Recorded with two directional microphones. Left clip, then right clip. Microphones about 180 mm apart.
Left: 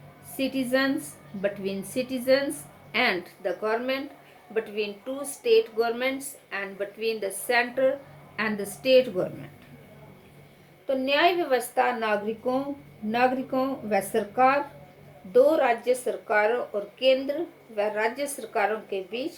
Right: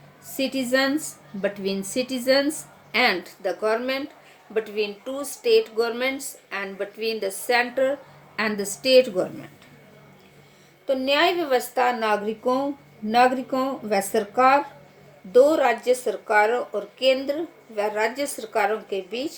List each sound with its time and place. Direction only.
0.3 s a woman's voice: 60° right (ahead or behind)
10.8 s a woman's voice: 60° right (ahead or behind)